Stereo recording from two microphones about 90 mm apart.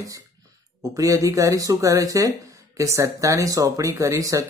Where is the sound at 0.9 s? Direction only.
40° right (ahead or behind).